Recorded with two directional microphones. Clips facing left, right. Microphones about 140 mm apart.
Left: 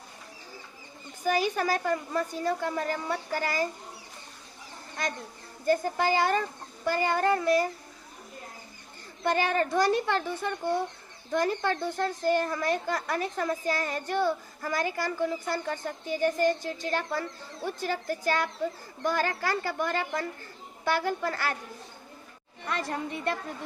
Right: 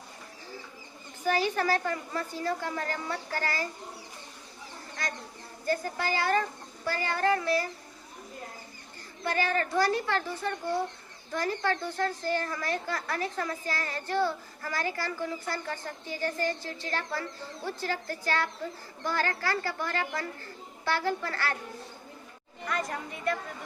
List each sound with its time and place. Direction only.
1.2 s speech: 15° left (ahead or behind)
5.6 s a child's voice: 20° left (ahead or behind)
9.2 s a child's voice: 20° left (ahead or behind)
22.7 s a child's voice: 30° left (ahead or behind)